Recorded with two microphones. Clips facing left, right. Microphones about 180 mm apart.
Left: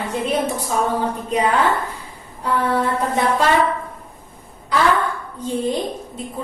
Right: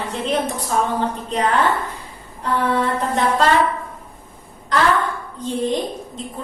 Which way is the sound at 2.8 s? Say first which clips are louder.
Even; 10° left (ahead or behind).